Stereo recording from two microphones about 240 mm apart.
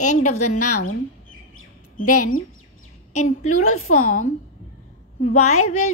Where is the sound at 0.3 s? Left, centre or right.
Left.